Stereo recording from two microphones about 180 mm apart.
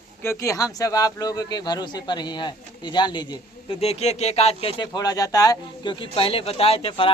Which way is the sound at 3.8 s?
35° left (ahead or behind).